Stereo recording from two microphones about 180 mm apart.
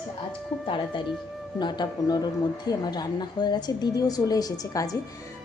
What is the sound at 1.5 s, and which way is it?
Speech, 25° left (ahead or behind).